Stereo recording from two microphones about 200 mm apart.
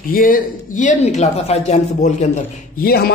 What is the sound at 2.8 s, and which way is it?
Speech, 50° left (ahead or behind).